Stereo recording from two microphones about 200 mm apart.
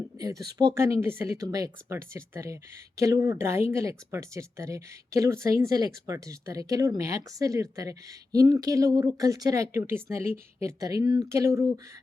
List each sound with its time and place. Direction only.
0.2 s speech: 15° right (ahead or behind)